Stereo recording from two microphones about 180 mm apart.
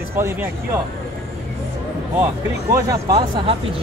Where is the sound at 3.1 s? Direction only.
30° right (ahead or behind).